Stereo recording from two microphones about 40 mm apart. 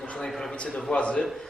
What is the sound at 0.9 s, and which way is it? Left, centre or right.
Speech, left.